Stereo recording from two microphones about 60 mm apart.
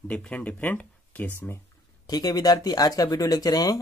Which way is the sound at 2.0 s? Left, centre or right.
Left.